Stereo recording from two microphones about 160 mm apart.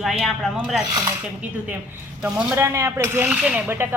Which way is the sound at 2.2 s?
10° right (ahead or behind).